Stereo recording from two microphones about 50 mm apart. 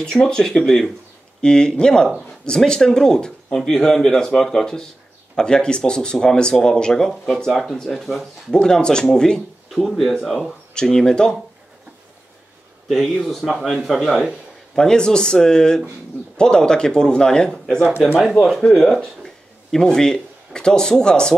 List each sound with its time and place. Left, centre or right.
0.0 s speech: centre
8.5 s speech: centre
12.8 s a man's voice: centre
14.8 s speech: centre